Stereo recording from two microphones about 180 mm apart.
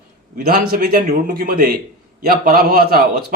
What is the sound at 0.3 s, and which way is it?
Speech, 55° right (ahead or behind).